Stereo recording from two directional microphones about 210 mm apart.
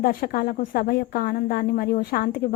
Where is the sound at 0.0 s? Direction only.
45° left (ahead or behind).